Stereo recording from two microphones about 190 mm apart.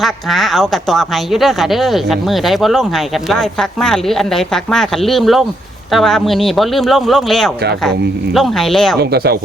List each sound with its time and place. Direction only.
0.0 s speech: centre (ahead or behind)
9.0 s speech: 55° right (ahead or behind)